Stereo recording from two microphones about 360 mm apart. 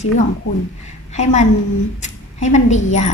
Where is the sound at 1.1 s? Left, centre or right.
Centre.